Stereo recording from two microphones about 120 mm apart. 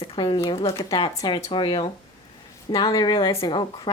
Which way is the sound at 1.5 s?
45° left (ahead or behind).